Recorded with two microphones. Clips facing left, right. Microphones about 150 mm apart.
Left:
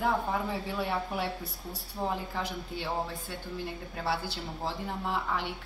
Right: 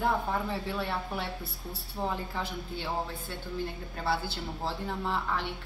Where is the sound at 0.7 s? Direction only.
10° left (ahead or behind).